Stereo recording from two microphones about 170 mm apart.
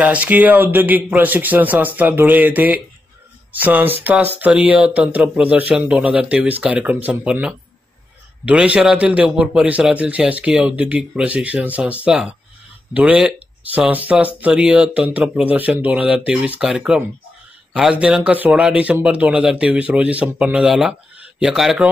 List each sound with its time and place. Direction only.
0.0 s speech: 10° right (ahead or behind)